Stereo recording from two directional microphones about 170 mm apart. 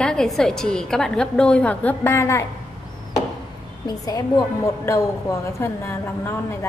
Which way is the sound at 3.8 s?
20° left (ahead or behind).